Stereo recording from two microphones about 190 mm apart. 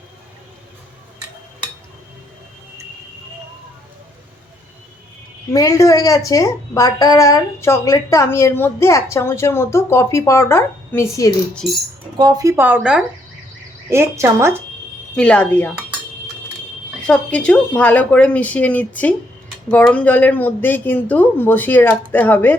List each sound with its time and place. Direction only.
5.5 s a woman's voice: 15° left (ahead or behind)
12.1 s speech: 20° right (ahead or behind)
15.1 s a woman's voice: 5° left (ahead or behind)
17.1 s a woman's voice: 5° left (ahead or behind)